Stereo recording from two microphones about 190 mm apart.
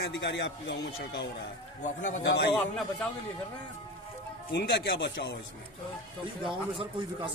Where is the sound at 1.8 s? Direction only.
40° left (ahead or behind).